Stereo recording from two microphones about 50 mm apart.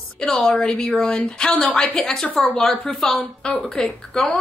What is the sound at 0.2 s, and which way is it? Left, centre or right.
Speech, centre.